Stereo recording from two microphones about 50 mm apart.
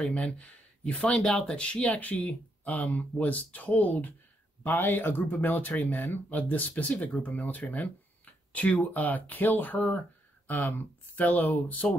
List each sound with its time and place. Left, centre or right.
0.0 s speech: left
1.1 s speech: centre; by 4.1 s left
4.6 s speech: left